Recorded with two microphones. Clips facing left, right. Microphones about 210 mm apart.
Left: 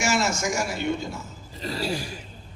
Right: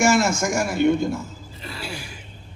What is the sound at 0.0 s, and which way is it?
A man's voice, 50° right (ahead or behind).